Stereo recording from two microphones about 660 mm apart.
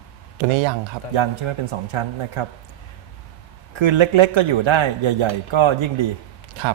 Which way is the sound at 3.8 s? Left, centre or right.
Right.